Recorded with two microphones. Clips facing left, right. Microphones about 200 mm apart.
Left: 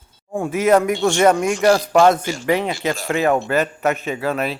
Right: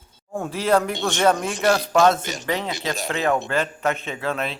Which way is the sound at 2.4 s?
15° left (ahead or behind).